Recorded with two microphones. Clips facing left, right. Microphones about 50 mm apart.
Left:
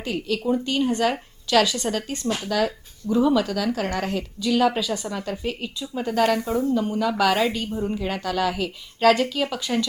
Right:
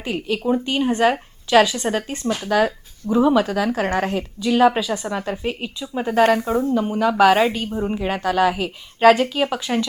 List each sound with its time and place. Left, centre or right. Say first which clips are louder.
0.0 s speech: right 2 dB; right